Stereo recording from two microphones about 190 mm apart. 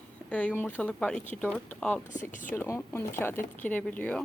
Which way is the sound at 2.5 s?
10° left (ahead or behind).